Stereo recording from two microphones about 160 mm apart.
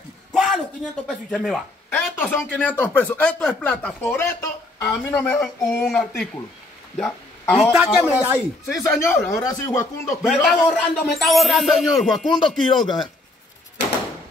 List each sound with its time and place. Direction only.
0.3 s a sound: centre (ahead or behind)
1.0 s speech: centre (ahead or behind)
7.7 s a man's voice: 10° right (ahead or behind)
9.4 s speech: 25° left (ahead or behind)
10.2 s a man's voice: 5° left (ahead or behind)
12.3 s speech: 30° left (ahead or behind)